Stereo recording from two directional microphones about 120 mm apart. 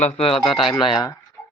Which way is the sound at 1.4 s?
20° left (ahead or behind).